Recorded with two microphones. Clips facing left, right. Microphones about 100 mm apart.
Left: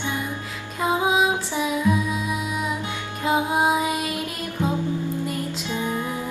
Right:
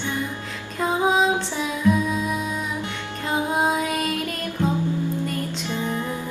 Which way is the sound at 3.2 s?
10° left (ahead or behind).